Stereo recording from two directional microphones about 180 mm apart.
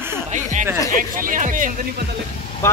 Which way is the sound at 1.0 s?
50° right (ahead or behind).